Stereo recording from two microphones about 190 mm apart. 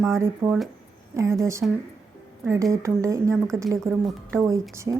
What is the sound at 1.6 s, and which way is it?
Speech, centre (ahead or behind).